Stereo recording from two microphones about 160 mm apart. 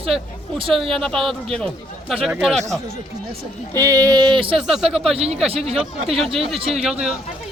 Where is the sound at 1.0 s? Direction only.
Centre (ahead or behind).